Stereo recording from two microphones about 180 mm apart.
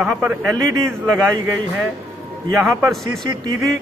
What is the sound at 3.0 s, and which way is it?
Speech, 20° right (ahead or behind).